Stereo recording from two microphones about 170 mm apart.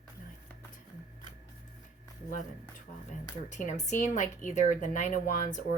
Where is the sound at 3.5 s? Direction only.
45° left (ahead or behind).